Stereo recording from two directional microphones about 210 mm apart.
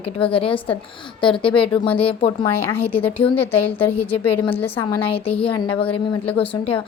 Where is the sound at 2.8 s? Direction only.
25° left (ahead or behind).